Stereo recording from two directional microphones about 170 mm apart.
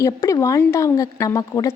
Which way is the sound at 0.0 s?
20° left (ahead or behind).